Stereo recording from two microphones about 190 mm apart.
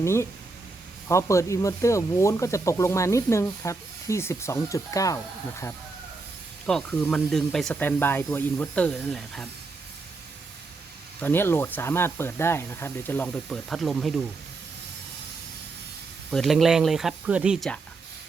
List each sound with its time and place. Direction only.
0.0 s speech: 15° left (ahead or behind)
6.7 s speech: 5° left (ahead or behind)
11.2 s speech: 10° left (ahead or behind)
16.3 s speech: centre (ahead or behind)